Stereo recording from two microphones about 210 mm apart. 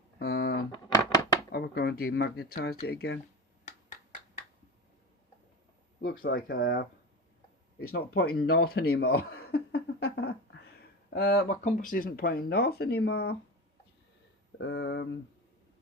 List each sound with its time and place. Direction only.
0.2 s a sound: 50° left (ahead or behind)
1.5 s speech: 50° left (ahead or behind)
3.7 s rub: 35° left (ahead or behind)
6.0 s speech: 45° left (ahead or behind)
14.6 s speech: 55° left (ahead or behind)